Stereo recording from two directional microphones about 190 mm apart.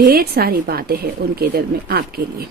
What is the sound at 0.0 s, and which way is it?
Speech, 50° right (ahead or behind).